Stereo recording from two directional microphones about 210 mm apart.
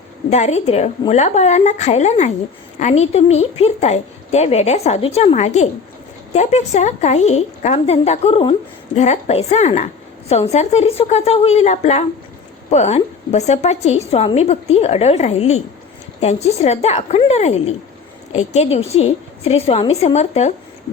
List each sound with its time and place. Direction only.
0.3 s a woman's voice: 35° left (ahead or behind)